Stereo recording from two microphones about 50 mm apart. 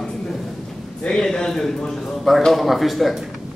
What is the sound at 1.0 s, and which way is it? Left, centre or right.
A man's voice, centre.